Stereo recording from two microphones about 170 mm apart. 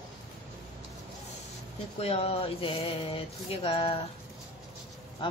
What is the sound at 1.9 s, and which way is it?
Speech, 35° left (ahead or behind).